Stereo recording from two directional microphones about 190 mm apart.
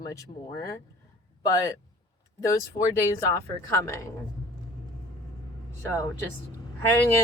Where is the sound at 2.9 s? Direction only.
15° left (ahead or behind).